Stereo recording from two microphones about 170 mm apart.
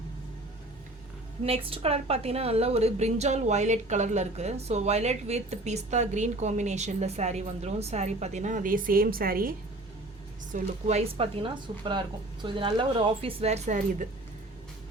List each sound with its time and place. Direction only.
1.5 s a woman's voice: 35° right (ahead or behind); by 9.6 s 60° right (ahead or behind)
10.5 s a woman's voice: 40° right (ahead or behind)